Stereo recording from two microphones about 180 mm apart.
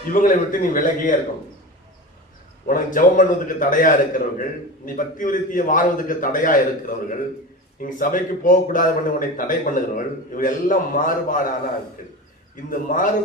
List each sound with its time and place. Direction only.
0.1 s a man's voice: 50° left (ahead or behind)
2.6 s a man's voice: 50° left (ahead or behind)
12.7 s a man's voice: 45° left (ahead or behind)